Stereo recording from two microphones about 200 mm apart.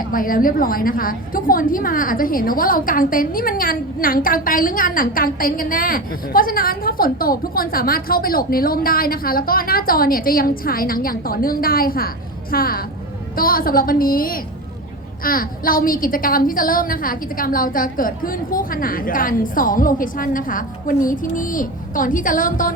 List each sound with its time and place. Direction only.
0.1 s a woman's voice: 45° left (ahead or behind)